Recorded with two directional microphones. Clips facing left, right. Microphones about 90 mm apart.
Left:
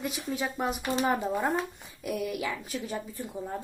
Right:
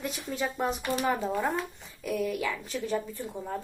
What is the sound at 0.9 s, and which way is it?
A woman's voice, 20° left (ahead or behind).